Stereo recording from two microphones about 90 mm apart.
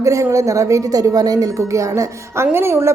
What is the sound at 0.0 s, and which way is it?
Speech, 35° right (ahead or behind).